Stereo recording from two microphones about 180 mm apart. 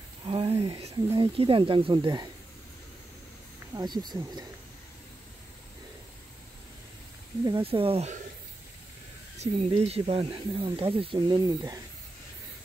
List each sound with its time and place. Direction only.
0.2 s speech: 30° right (ahead or behind)
3.7 s speech: 25° right (ahead or behind)
7.4 s speech: 30° right (ahead or behind)
9.4 s speech: 35° right (ahead or behind)